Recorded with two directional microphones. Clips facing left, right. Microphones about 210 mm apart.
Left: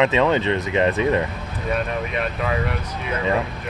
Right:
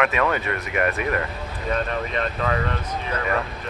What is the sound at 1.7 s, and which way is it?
Speech, 10° left (ahead or behind).